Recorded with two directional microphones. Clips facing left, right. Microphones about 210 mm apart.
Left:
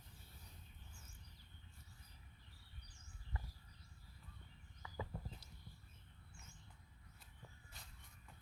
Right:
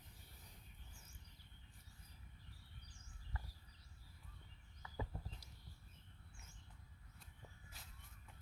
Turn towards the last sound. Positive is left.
turn(degrees=-5)  # may be behind; listen again after turning